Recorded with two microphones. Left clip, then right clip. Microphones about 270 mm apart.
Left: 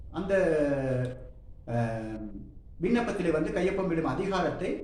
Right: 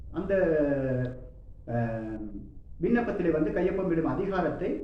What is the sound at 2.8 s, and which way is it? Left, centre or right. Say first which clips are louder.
A man's voice: right 1 dB; left.